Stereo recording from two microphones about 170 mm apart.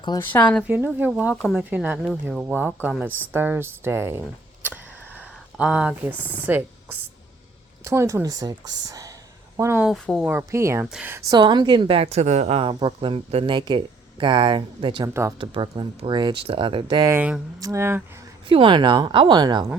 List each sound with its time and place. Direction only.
0.3 s speech: 5° left (ahead or behind)
0.9 s speech: 5° right (ahead or behind)
1.7 s speech: 10° right (ahead or behind)
4.6 s a sound: 10° right (ahead or behind)
7.9 s a woman's voice: 15° right (ahead or behind)
9.8 s speech: centre (ahead or behind)
10.2 s speech: 15° right (ahead or behind)
11.3 s a woman's voice: 25° right (ahead or behind)
17.1 s speech: 10° right (ahead or behind)
18.4 s a woman's voice: 30° right (ahead or behind)